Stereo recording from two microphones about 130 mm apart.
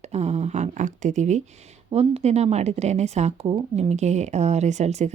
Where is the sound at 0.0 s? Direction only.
60° right (ahead or behind).